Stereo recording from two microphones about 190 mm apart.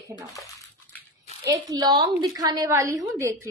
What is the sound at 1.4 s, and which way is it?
A woman's voice, 20° right (ahead or behind).